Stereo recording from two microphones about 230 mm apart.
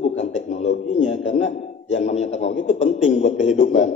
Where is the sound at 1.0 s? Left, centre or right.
Left.